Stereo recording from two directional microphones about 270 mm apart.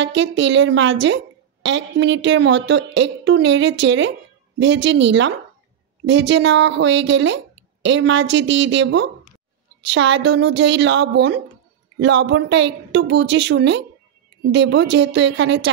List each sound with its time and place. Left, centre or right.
0.0 s a woman's voice: right